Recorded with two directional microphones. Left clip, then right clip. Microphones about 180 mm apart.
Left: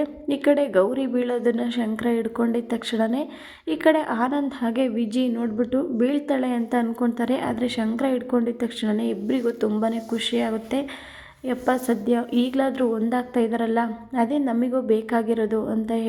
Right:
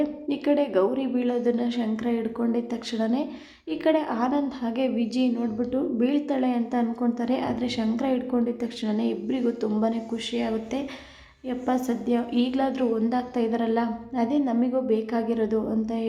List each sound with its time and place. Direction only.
0.0 s a woman's voice: 20° left (ahead or behind)